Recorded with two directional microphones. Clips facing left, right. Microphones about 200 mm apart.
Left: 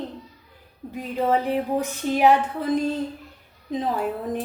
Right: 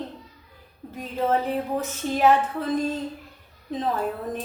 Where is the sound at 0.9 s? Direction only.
15° left (ahead or behind).